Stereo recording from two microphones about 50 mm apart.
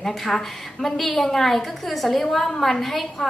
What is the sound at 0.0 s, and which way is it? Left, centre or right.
A woman's voice, centre.